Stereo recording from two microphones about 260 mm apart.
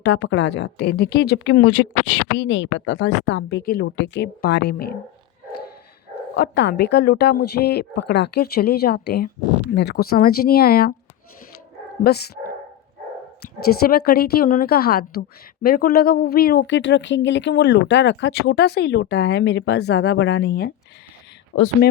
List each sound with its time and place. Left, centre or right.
0.0 s speech: left
6.3 s speech: left
12.0 s speech: left
13.7 s speech: left
21.5 s speech: left